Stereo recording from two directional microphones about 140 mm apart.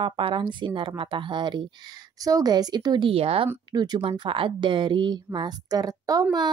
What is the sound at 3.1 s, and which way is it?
Speech, 45° right (ahead or behind).